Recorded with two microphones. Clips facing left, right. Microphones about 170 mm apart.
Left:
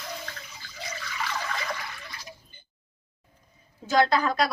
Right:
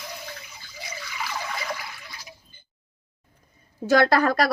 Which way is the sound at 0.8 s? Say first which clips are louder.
Left 1 dB; 10° right (ahead or behind).